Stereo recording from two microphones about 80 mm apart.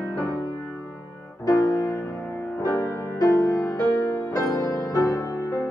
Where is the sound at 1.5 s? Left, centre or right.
Left.